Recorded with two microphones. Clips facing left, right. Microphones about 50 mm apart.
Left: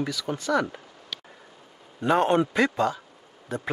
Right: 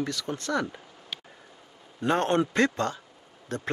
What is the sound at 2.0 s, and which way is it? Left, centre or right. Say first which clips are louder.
Speech: left 3 dB; centre.